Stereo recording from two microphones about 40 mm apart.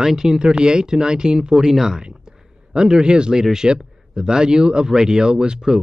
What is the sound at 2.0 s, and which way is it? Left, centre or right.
Speech, right.